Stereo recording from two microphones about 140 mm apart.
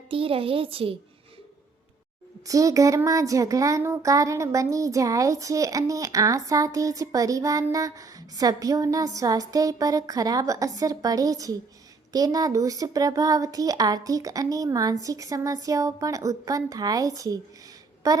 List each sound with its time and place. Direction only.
0.1 s a child's voice: 40° right (ahead or behind)
2.5 s speech: 25° right (ahead or behind)